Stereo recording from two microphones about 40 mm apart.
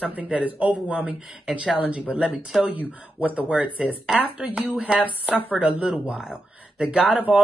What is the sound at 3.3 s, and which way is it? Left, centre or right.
Speech, right.